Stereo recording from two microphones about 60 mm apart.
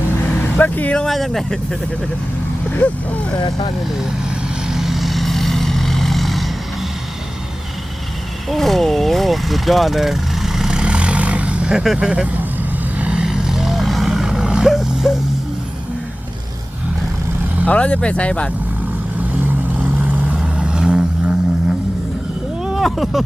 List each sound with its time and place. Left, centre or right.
0.5 s speech: left
0.9 s speech: centre
2.8 s speech: left
4.6 s vehicle: centre
8.4 s speech: centre
13.0 s vehicle: centre
17.7 s speech: centre
19.8 s vehicle: right
20.2 s vehicle: centre
22.6 s a sound: centre